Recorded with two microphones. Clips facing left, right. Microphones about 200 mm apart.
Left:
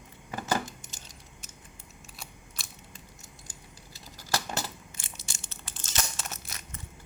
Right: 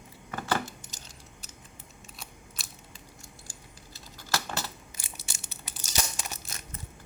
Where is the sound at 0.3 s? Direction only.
20° left (ahead or behind).